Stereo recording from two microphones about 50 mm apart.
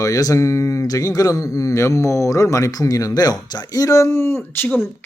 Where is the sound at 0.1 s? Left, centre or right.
Left.